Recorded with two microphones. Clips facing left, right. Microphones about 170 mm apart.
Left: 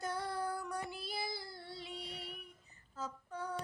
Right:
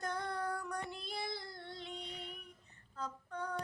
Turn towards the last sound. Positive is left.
turn(degrees=5)  # may be behind; listen again after turning